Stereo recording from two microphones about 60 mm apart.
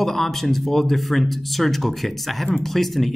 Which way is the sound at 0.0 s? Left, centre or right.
Centre.